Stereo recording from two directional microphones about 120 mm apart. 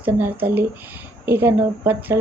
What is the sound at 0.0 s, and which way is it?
Speech, 15° right (ahead or behind).